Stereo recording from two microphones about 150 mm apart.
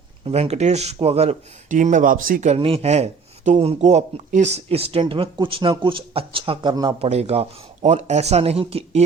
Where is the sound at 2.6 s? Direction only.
40° right (ahead or behind).